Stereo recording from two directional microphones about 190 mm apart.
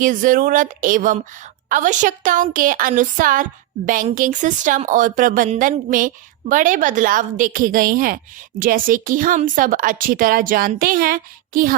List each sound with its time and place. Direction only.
0.0 s a woman's voice: 45° right (ahead or behind)